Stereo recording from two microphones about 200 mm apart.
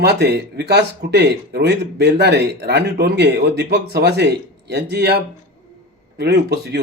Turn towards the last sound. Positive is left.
turn(degrees=-55)  # may be behind; listen again after turning